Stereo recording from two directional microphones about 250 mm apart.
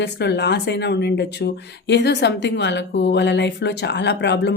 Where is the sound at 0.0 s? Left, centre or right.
Left.